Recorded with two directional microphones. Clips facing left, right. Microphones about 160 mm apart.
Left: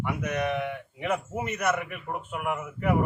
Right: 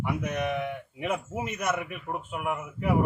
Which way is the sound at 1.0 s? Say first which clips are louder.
Left 1 dB; 5° right (ahead or behind).